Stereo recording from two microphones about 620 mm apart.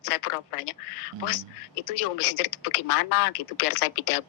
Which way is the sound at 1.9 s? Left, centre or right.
Left.